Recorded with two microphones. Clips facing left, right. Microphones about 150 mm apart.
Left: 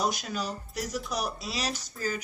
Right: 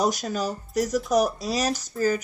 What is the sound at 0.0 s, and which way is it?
Speech, 40° right (ahead or behind).